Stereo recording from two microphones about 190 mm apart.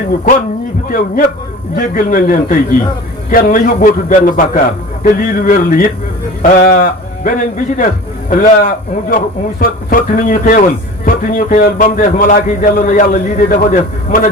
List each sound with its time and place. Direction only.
0.9 s a man's voice: 45° left (ahead or behind)